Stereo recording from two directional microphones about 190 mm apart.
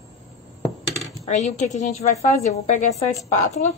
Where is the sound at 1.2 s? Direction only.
35° left (ahead or behind).